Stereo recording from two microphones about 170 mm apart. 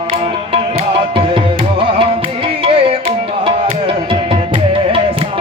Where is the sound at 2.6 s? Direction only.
35° right (ahead or behind).